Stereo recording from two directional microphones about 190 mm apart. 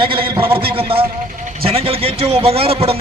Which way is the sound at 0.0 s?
25° right (ahead or behind).